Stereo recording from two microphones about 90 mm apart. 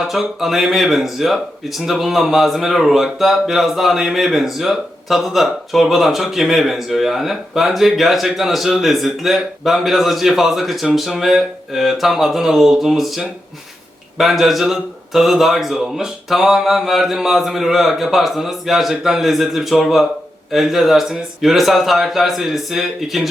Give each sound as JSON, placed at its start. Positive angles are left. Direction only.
{"t": 0.0, "sound": "speech", "side_deg": -5}